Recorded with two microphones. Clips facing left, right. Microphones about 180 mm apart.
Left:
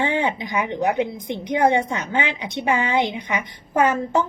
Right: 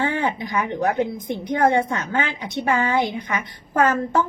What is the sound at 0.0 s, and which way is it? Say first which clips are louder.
A woman's voice: left 1 dB; 20° left (ahead or behind).